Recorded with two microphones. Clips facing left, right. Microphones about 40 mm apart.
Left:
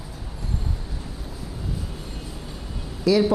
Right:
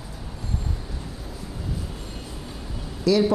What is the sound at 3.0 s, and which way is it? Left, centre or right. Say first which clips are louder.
Speech: left 1 dB; centre.